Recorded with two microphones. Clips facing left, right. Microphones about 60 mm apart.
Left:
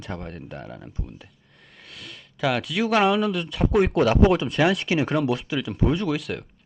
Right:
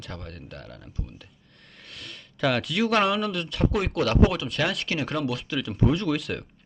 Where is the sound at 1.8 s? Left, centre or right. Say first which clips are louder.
Even; centre.